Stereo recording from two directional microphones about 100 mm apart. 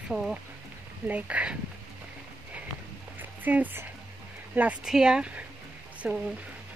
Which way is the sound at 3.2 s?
15° right (ahead or behind).